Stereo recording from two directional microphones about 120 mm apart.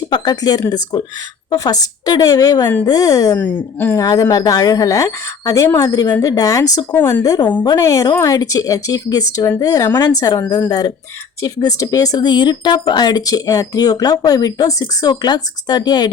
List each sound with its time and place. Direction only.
0.1 s speech: 35° left (ahead or behind)
3.3 s a woman's voice: 15° left (ahead or behind)
3.9 s speech: 30° left (ahead or behind)